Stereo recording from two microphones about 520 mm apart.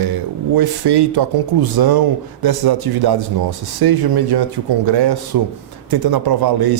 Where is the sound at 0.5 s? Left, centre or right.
Right.